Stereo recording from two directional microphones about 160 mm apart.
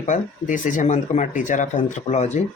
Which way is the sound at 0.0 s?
55° left (ahead or behind).